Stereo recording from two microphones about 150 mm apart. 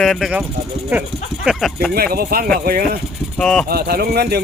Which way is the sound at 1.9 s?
85° right.